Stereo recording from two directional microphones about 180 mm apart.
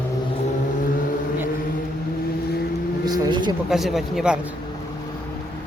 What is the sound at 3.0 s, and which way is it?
Speech, 25° right (ahead or behind).